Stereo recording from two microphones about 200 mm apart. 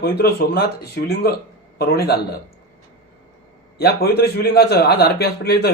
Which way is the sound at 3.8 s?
50° left (ahead or behind).